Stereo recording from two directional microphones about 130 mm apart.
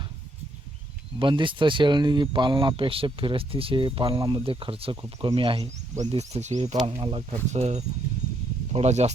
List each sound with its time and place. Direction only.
1.2 s speech: 40° right (ahead or behind)
6.1 s speech: 55° right (ahead or behind)
7.0 s speech: 45° right (ahead or behind)